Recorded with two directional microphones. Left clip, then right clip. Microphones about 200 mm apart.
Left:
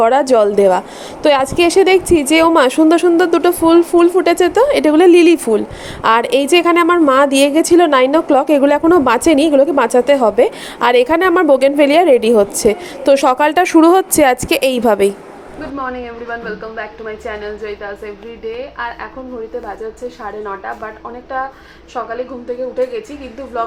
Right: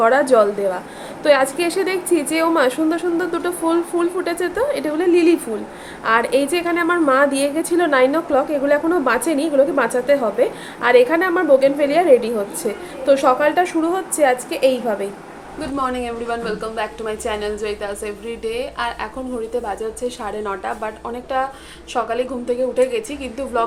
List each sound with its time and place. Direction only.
0.0 s a woman's voice: 35° left (ahead or behind)
15.9 s a woman's voice: 15° right (ahead or behind)
20.4 s a woman's voice: 15° right (ahead or behind)
23.5 s a woman's voice: 10° right (ahead or behind)